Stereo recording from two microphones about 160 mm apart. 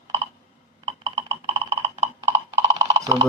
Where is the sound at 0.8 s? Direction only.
35° right (ahead or behind).